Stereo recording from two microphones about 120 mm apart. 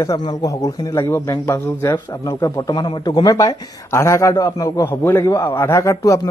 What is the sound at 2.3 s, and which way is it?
A man's voice, 35° left (ahead or behind).